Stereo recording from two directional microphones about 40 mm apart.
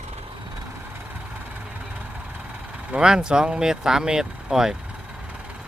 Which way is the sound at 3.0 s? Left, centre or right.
Centre.